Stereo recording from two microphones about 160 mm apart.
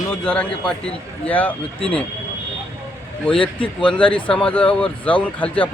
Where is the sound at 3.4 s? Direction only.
30° left (ahead or behind).